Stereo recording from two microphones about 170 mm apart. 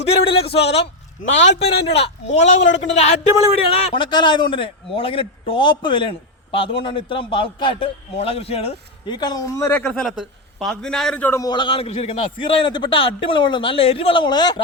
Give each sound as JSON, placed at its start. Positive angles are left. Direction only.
{"t": 0.6, "sound": "a man's voice", "side_deg": 90}
{"t": 1.4, "sound": "a man's voice", "side_deg": 40}